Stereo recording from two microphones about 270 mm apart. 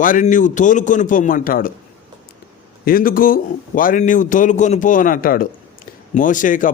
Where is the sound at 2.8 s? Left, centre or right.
Left.